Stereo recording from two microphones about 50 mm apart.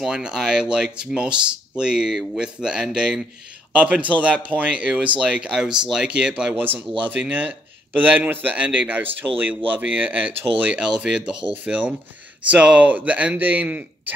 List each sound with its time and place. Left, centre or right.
0.0 s speech: centre
3.7 s speech: right
6.5 s a man's voice: right